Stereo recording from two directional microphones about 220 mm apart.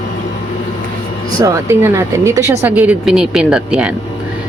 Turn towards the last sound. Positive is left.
turn(degrees=-5)  # may be behind; listen again after turning